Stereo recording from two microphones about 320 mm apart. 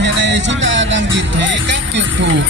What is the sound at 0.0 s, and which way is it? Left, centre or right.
Music, right.